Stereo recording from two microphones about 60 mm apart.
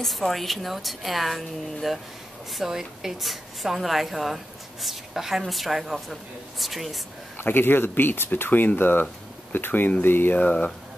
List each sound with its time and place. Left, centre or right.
0.0 s speech: centre
7.3 s speech: left